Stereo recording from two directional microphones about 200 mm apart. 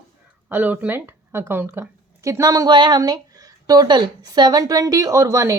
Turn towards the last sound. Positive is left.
turn(degrees=-15)  # may be behind; listen again after turning